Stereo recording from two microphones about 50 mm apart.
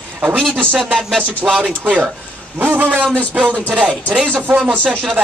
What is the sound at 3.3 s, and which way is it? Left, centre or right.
Music, right.